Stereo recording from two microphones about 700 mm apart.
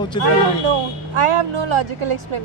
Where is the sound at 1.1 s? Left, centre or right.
Right.